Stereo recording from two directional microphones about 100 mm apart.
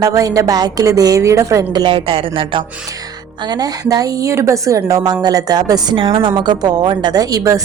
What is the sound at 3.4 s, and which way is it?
A woman's voice, 45° right (ahead or behind).